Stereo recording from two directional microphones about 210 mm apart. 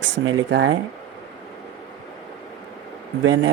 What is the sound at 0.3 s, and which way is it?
Speech, 60° right (ahead or behind).